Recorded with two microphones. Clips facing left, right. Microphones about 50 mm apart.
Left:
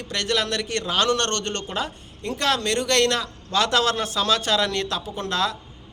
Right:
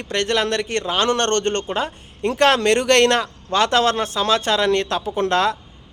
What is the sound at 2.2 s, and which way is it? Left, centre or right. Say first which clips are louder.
A man's voice: right 7 dB; right.